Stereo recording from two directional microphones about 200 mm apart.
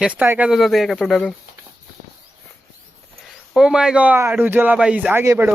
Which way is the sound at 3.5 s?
5° right (ahead or behind).